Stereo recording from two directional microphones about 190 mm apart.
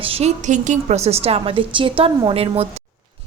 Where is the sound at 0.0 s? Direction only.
30° right (ahead or behind).